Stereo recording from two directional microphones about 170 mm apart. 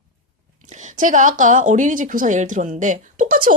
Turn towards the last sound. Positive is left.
turn(degrees=-55)  # may be behind; listen again after turning